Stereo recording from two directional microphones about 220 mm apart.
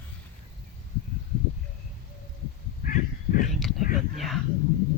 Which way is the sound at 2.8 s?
40° left (ahead or behind).